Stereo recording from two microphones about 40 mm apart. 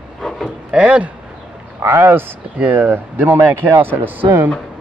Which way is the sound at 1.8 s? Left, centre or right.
Right.